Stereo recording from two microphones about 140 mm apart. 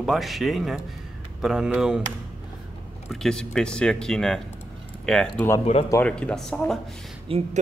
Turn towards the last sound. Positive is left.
turn(degrees=-40)  # may be behind; listen again after turning